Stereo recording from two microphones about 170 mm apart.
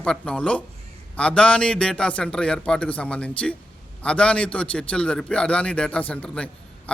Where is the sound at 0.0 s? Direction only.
5° left (ahead or behind).